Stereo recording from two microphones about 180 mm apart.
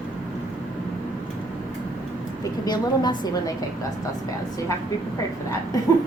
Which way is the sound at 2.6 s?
25° left (ahead or behind).